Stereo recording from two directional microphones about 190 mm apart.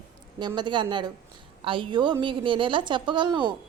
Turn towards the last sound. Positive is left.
turn(degrees=-25)  # may be behind; listen again after turning